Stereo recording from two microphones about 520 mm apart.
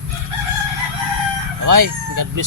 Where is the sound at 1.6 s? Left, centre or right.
Right.